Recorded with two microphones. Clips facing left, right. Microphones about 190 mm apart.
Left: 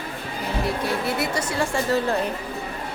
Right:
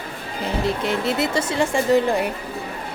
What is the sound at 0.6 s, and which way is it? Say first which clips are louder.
Speech: right 3 dB; 20° right (ahead or behind).